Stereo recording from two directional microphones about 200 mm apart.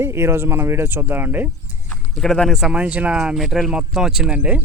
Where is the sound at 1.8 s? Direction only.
Centre (ahead or behind).